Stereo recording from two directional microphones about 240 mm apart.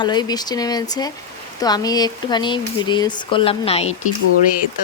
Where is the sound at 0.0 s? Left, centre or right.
Centre.